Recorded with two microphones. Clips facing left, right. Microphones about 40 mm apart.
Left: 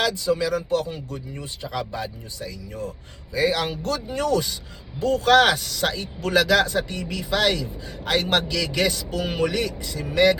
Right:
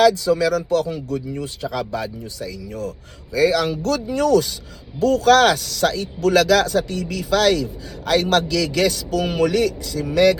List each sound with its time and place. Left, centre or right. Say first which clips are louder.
0.3 s speech: right 4 dB; right
1.8 s speech: right 5 dB; left